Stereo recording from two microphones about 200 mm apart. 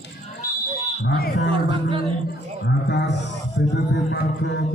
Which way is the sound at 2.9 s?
60° left (ahead or behind).